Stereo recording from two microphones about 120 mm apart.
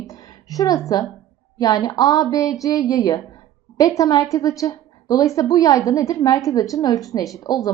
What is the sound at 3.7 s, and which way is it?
A woman's voice, 30° left (ahead or behind).